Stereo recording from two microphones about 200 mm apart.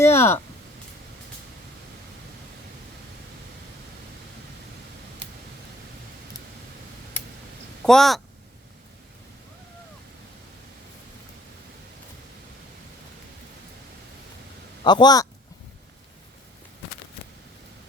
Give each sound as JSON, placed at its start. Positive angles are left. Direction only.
{"t": 0.0, "sound": "speech", "side_deg": 15}
{"t": 7.9, "sound": "speech", "side_deg": 0}
{"t": 14.8, "sound": "a man's voice", "side_deg": 20}